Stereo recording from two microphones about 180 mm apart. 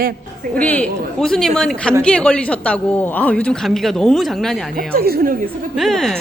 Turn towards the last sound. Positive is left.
turn(degrees=0)  # may be behind; listen again after turning